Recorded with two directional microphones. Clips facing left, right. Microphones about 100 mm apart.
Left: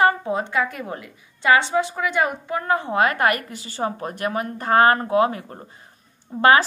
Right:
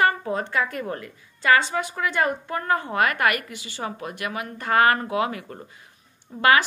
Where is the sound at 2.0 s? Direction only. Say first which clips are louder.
Left 1 dB; 10° left (ahead or behind).